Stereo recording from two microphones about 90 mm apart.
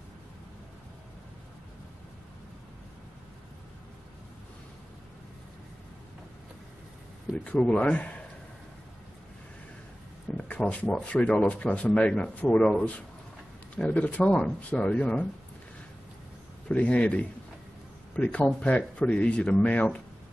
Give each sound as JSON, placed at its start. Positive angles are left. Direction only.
{"t": 7.4, "sound": "speech", "side_deg": 15}
{"t": 10.3, "sound": "speech", "side_deg": 15}
{"t": 16.6, "sound": "a man's voice", "side_deg": 15}